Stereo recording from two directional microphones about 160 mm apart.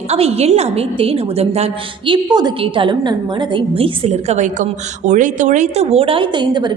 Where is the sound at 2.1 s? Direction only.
25° right (ahead or behind).